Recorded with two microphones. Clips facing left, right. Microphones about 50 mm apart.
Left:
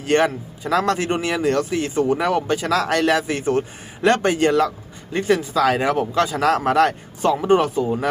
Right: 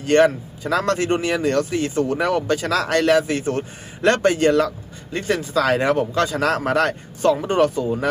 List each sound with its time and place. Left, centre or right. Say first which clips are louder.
0.1 s a man's voice: right 3 dB; left